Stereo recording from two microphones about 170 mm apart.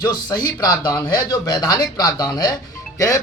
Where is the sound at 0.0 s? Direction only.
25° left (ahead or behind).